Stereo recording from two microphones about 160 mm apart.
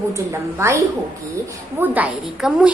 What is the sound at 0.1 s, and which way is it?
Speech, 15° right (ahead or behind).